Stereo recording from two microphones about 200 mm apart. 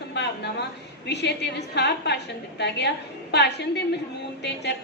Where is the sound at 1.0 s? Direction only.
60° left (ahead or behind).